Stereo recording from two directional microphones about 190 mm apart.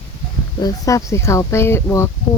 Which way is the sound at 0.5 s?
20° left (ahead or behind).